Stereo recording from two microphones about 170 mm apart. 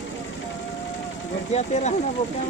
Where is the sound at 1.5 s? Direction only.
40° left (ahead or behind).